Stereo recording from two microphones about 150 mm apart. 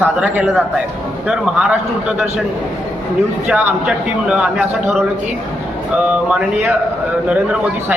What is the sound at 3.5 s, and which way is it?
A man's voice, 10° right (ahead or behind).